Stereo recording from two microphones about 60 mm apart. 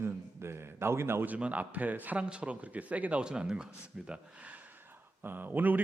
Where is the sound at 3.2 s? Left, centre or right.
Centre.